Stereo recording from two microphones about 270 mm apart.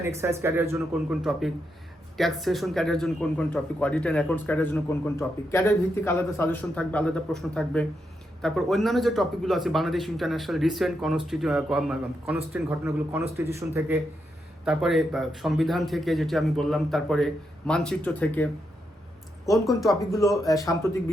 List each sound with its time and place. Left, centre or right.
0.0 s speech: centre
19.5 s speech: centre
20.4 s a man's voice: centre